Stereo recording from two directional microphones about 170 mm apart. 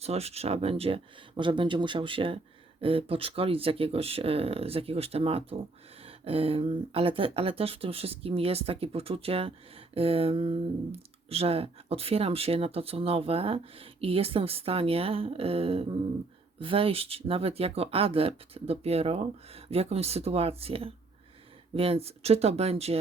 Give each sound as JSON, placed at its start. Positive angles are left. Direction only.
{"t": 0.0, "sound": "speech", "side_deg": -35}